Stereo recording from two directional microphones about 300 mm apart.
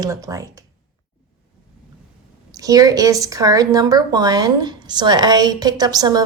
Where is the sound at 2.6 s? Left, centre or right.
Centre.